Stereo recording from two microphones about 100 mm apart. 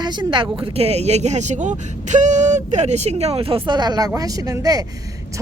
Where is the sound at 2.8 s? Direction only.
90° right; by 3.6 s 70° right (ahead or behind).